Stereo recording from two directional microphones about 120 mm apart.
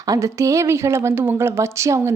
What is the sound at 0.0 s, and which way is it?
Speech, 25° right (ahead or behind).